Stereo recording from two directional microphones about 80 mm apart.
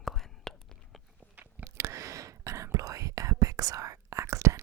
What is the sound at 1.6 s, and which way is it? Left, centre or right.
Whispering, right.